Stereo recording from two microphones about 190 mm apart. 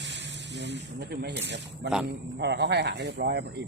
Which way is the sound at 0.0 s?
65° right (ahead or behind).